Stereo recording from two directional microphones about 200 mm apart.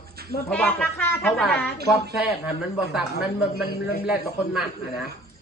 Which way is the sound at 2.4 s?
5° right (ahead or behind).